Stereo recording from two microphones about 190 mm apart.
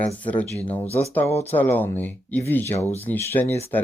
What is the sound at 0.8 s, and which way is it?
Speech, 35° left (ahead or behind).